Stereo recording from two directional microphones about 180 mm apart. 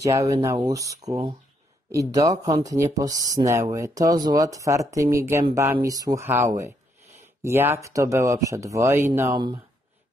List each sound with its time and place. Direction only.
0.0 s speech: 20° right (ahead or behind)